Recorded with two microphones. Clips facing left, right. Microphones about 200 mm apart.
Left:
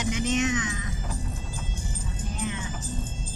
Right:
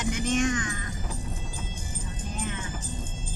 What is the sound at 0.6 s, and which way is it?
Music, centre (ahead or behind).